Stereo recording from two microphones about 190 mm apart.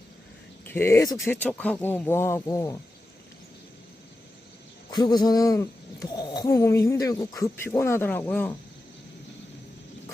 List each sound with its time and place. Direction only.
0.7 s speech: 15° left (ahead or behind)
4.9 s speech: 20° left (ahead or behind)